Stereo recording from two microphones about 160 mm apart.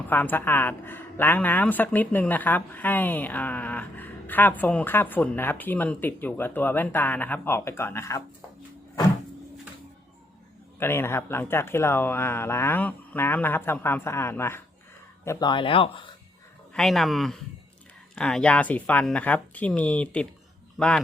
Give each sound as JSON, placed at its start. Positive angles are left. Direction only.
{"t": 0.1, "sound": "speech", "side_deg": 10}
{"t": 10.8, "sound": "speech", "side_deg": 15}
{"t": 15.4, "sound": "speech", "side_deg": 30}
{"t": 16.7, "sound": "a man's voice", "side_deg": 0}